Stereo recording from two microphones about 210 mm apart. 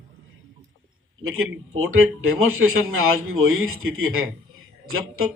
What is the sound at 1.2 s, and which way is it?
A man's voice, 80° right.